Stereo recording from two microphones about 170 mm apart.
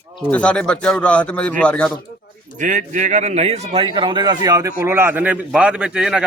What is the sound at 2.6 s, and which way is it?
Speech, 50° right (ahead or behind).